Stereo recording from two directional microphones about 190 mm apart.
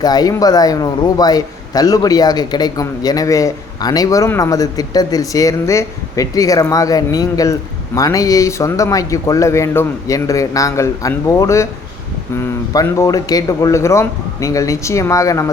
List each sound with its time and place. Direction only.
0.0 s a man's voice: 20° left (ahead or behind)